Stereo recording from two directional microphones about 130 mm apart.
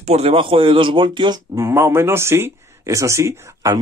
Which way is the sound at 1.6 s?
20° right (ahead or behind).